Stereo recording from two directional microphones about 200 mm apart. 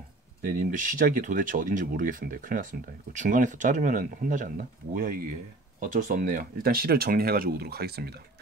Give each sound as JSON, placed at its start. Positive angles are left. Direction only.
{"t": 0.5, "sound": "speech", "side_deg": -40}